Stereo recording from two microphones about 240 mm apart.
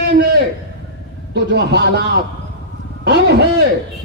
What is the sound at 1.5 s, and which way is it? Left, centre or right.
Speech, right.